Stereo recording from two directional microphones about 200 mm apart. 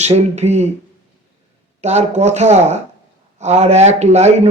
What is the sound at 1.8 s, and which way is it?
A man's voice, 35° right (ahead or behind).